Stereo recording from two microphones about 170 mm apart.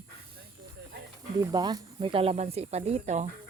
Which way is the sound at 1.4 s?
25° right (ahead or behind).